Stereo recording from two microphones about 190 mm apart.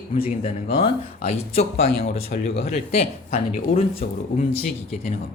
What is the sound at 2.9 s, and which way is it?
Speech, 30° left (ahead or behind).